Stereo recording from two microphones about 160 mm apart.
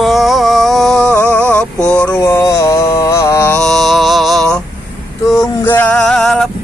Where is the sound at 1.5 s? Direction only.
5° left (ahead or behind).